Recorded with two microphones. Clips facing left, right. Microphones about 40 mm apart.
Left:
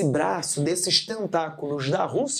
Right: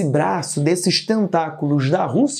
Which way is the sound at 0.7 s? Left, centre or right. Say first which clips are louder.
Right 9 dB; right.